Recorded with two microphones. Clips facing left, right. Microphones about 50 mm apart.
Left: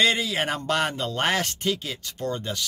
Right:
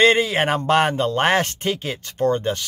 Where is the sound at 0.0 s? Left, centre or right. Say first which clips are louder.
Right 7 dB; right.